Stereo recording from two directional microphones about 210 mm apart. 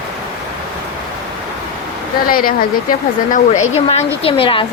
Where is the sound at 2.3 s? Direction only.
45° left (ahead or behind).